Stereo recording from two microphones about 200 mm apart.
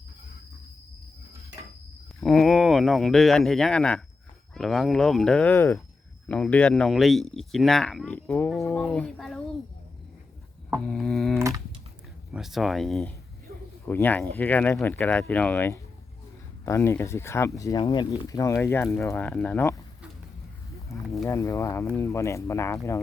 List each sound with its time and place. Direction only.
2.2 s speech: centre (ahead or behind)
10.7 s a sound: centre (ahead or behind)
11.3 s typing: 15° right (ahead or behind)
12.3 s speech: centre (ahead or behind)
21.2 s speech: 15° left (ahead or behind)